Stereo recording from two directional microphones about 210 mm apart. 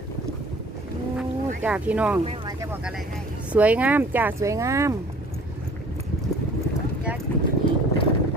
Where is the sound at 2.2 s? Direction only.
30° right (ahead or behind).